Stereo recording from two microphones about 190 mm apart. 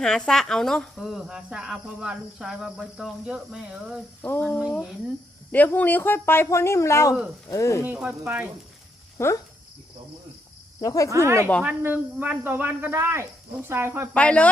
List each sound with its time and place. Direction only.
0.0 s a woman's voice: 5° left (ahead or behind)
4.2 s a woman's voice: 10° left (ahead or behind)
7.9 s a man's voice: 5° right (ahead or behind)
9.1 s speech: 15° left (ahead or behind)
10.8 s speech: 20° left (ahead or behind)
11.1 s a man's voice: 15° right (ahead or behind)
14.1 s speech: 5° left (ahead or behind)